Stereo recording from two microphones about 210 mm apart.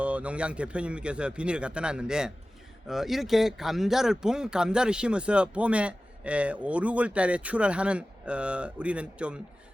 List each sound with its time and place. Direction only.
0.0 s speech: 5° right (ahead or behind)